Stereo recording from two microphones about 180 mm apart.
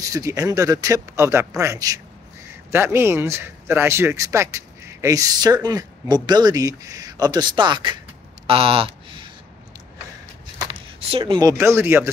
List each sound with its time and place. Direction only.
0.0 s a man's voice: 20° right (ahead or behind)
8.5 s a sound: 30° right (ahead or behind)
10.6 s speech: 30° right (ahead or behind); by 12.1 s 15° right (ahead or behind)